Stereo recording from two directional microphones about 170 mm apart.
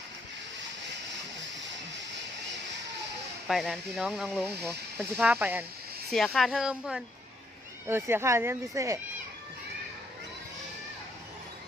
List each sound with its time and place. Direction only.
3.4 s speech: centre (ahead or behind)
5.2 s speech: 10° right (ahead or behind)
6.1 s speech: centre (ahead or behind); by 9.0 s 20° right (ahead or behind)